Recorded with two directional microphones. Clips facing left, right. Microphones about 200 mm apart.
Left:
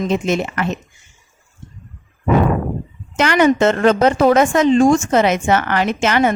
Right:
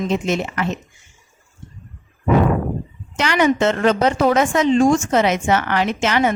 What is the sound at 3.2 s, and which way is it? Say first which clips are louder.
A woman's voice: left 3 dB; 50° left (ahead or behind).